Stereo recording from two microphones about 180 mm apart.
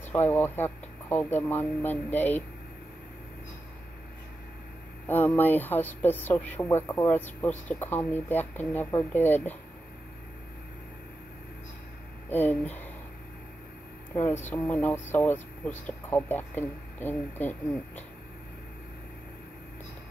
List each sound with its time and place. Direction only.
0.1 s speech: 10° left (ahead or behind)
5.0 s speech: 10° left (ahead or behind)
12.3 s speech: 10° left (ahead or behind)
14.1 s speech: 10° left (ahead or behind)